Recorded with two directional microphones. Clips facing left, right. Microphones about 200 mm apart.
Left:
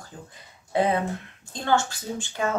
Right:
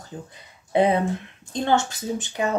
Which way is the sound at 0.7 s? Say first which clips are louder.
Right 4 dB; 20° right (ahead or behind).